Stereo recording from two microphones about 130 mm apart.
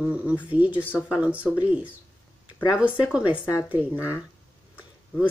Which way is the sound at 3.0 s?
5° right (ahead or behind).